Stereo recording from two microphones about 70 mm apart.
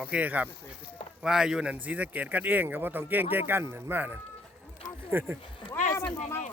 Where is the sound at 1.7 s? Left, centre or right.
Right.